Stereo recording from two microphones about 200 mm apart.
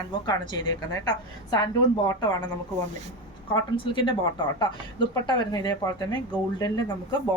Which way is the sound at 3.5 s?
25° left (ahead or behind).